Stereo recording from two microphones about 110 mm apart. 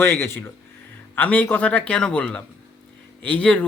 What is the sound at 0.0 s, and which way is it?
Speech, 20° left (ahead or behind).